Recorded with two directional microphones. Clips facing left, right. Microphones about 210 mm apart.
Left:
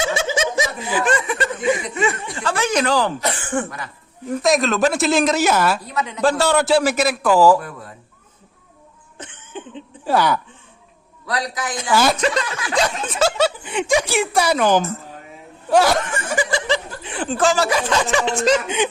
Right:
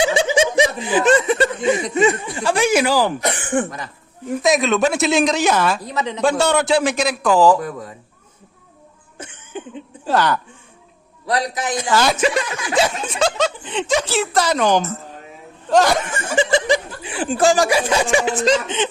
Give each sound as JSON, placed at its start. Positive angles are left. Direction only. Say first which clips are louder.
{"t": 0.5, "sound": "speech", "louder": "right 5 dB", "side_deg": -15}
{"t": 4.3, "sound": "a woman's voice", "louder": "right 1 dB", "side_deg": 0}
{"t": 5.9, "sound": "a man's voice", "louder": "right 2 dB", "side_deg": -20}
{"t": 6.2, "sound": "a woman's voice", "louder": "even", "side_deg": 0}
{"t": 9.1, "sound": "cough", "louder": "right 2 dB", "side_deg": -10}
{"t": 10.1, "sound": "speech", "louder": "even", "side_deg": 10}
{"t": 11.3, "sound": "a man's voice", "louder": "right 4 dB", "side_deg": -25}
{"t": 11.9, "sound": "speech", "louder": "left 1 dB", "side_deg": 5}
{"t": 12.1, "sound": "a woman's voice", "louder": "right 2 dB", "side_deg": -10}
{"t": 16.3, "sound": "speech", "louder": "right 4 dB", "side_deg": -25}
{"t": 18.4, "sound": "speech", "louder": "even", "side_deg": 10}